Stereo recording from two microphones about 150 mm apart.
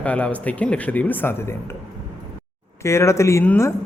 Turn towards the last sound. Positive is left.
turn(degrees=15)  # may be behind; listen again after turning